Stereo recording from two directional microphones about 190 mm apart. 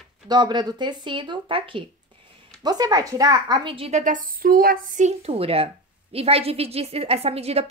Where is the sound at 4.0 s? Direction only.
45° right (ahead or behind).